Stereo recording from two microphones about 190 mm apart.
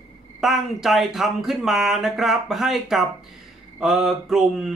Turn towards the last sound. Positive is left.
turn(degrees=0)  # may be behind; listen again after turning